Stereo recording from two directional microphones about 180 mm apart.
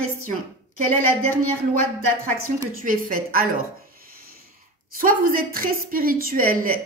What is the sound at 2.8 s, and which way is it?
Speech, 50° right (ahead or behind).